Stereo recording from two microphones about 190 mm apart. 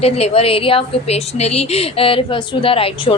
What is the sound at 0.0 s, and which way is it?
A woman's voice, 30° left (ahead or behind).